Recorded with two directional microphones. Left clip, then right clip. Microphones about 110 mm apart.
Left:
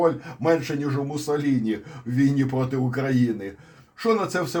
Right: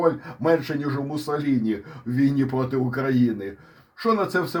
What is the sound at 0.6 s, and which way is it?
Speech, 25° right (ahead or behind).